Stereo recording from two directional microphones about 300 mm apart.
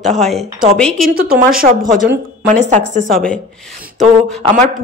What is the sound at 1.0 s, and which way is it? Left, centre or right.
Speech, right.